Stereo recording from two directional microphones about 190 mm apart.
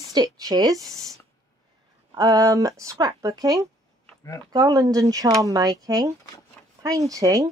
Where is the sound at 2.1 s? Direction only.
20° right (ahead or behind).